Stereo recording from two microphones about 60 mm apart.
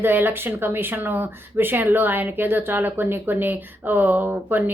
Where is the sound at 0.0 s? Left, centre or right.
Right.